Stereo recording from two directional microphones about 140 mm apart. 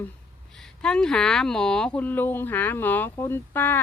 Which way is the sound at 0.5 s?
5° left (ahead or behind).